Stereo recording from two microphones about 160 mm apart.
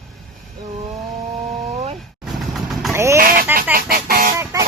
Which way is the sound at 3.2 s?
60° right (ahead or behind).